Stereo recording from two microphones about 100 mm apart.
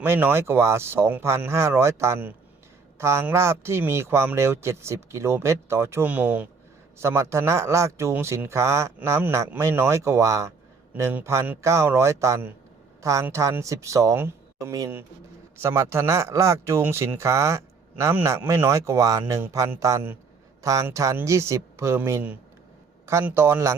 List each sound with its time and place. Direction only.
0.0 s speech: 20° right (ahead or behind)
6.1 s speech: 15° right (ahead or behind)
7.0 s speech: 25° right (ahead or behind)